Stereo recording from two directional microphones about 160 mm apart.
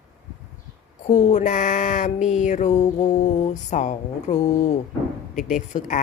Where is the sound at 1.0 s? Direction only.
50° left (ahead or behind).